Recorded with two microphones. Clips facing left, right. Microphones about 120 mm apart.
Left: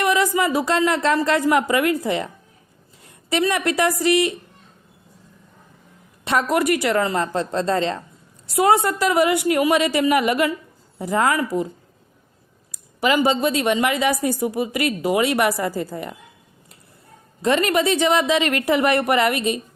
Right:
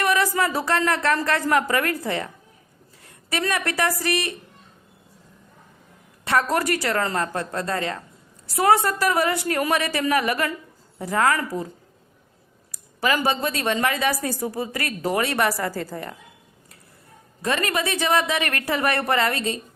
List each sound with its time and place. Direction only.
0.0 s speech: 20° left (ahead or behind)
3.0 s a sound: 20° left (ahead or behind)
3.4 s speech: 20° left (ahead or behind)
6.2 s speech: 20° left (ahead or behind)
12.7 s a woman's voice: 20° left (ahead or behind)
17.4 s speech: 25° left (ahead or behind)